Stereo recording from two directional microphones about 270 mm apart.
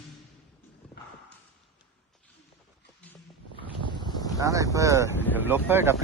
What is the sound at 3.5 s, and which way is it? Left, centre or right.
Boat, centre.